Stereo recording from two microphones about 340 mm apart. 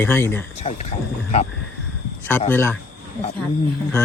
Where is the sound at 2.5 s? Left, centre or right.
Centre.